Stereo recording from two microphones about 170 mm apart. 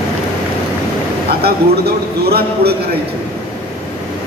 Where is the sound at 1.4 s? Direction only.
70° right (ahead or behind).